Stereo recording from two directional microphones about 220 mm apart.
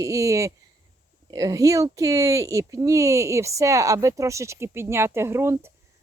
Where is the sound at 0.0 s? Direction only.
15° right (ahead or behind).